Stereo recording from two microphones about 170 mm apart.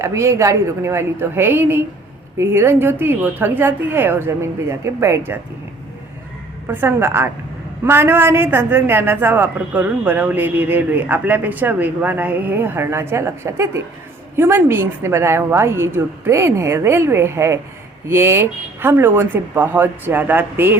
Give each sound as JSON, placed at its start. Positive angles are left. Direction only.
{"t": 0.0, "sound": "a man's voice", "side_deg": -15}
{"t": 6.7, "sound": "a man's voice", "side_deg": -15}